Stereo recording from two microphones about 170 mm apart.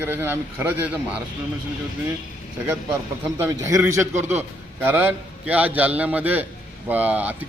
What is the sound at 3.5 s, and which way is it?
A man's voice, 20° right (ahead or behind).